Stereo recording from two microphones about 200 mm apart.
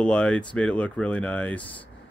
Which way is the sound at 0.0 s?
5° left (ahead or behind).